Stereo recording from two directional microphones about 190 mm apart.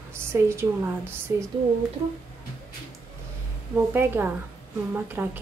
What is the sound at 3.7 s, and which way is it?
A woman's voice, 10° right (ahead or behind).